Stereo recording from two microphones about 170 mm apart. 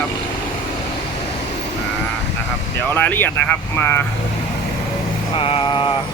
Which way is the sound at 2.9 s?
10° left (ahead or behind).